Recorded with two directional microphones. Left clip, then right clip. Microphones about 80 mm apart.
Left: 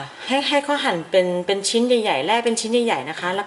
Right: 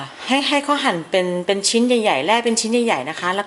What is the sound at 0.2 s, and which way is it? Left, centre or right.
A woman's voice, centre.